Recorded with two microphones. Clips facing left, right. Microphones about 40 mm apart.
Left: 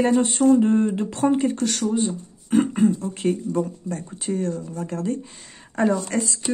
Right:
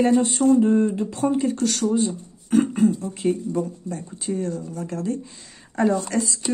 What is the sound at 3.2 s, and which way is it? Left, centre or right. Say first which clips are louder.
Speech: even; left.